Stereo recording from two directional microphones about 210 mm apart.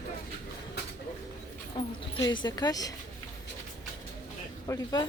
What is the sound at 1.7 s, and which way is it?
A woman's voice, 20° left (ahead or behind).